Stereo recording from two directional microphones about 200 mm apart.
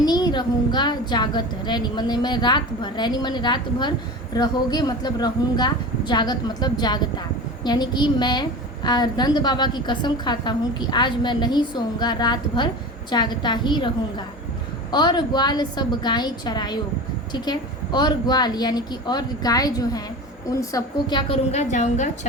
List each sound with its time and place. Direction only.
0.0 s a woman's voice: 20° left (ahead or behind); by 22.3 s 35° left (ahead or behind)